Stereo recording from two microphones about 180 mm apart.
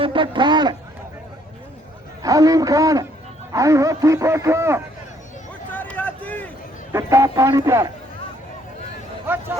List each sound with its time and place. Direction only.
0.0 s a man's voice: 30° right (ahead or behind)
2.2 s a man's voice: 20° right (ahead or behind)
5.7 s a sound: 10° left (ahead or behind)
6.9 s a man's voice: 15° right (ahead or behind)
9.3 s speech: 10° right (ahead or behind)